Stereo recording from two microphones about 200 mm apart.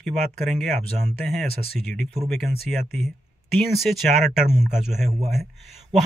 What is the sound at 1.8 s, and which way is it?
Speech, centre (ahead or behind).